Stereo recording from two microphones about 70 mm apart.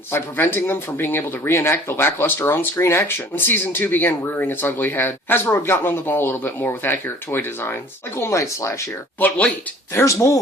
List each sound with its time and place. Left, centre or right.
0.1 s speech: left
9.1 s speech: left
9.9 s speech: left